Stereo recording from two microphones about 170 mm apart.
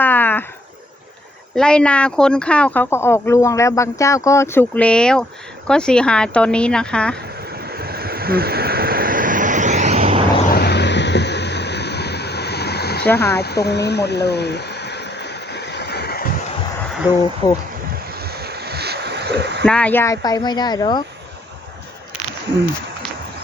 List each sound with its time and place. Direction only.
0.0 s a sound: 10° left (ahead or behind)
1.5 s speech: 5° left (ahead or behind)
7.5 s waves: 65° right (ahead or behind); by 10.2 s 40° right (ahead or behind)
10.5 s vehicle: 75° left (ahead or behind)
17.4 s speech: 25° left (ahead or behind)
18.2 s a sound: 70° right (ahead or behind); by 19.6 s 85° right
19.6 s speech: 5° left (ahead or behind); by 21.0 s 25° left (ahead or behind)